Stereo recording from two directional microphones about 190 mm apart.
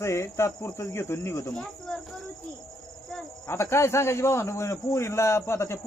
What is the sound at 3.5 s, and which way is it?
A man's voice, 15° left (ahead or behind).